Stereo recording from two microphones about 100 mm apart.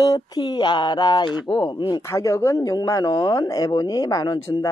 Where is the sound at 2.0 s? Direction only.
30° left (ahead or behind).